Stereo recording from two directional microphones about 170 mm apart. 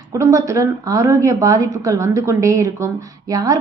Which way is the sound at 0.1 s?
20° right (ahead or behind).